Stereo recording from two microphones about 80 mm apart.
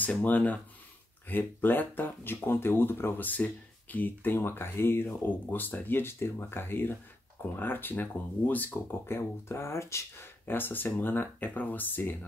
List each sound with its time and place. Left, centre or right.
0.0 s speech: centre; by 10.5 s left
10.5 s speech: left